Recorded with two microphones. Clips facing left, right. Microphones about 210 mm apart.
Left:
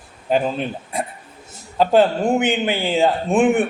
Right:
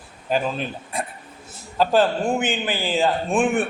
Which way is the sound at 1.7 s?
20° left (ahead or behind).